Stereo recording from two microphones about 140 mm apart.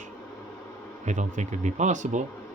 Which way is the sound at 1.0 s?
60° right (ahead or behind).